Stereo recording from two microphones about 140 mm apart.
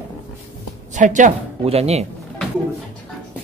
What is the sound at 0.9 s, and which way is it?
Speech, 65° right (ahead or behind).